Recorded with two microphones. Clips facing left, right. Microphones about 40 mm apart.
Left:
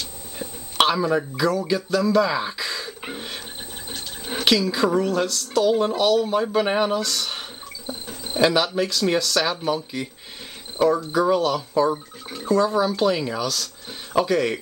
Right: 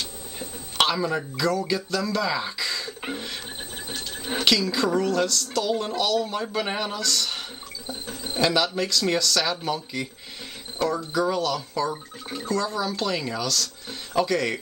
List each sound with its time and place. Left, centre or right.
0.4 s speech: centre
3.9 s squeal: centre
4.5 s speech: centre